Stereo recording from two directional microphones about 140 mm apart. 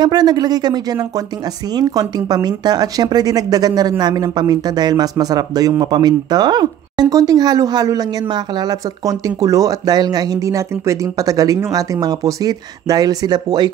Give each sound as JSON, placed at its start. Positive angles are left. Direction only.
{"t": 0.0, "sound": "speech", "side_deg": -30}